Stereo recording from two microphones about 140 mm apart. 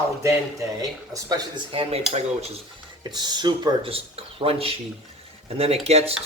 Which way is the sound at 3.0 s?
30° right (ahead or behind).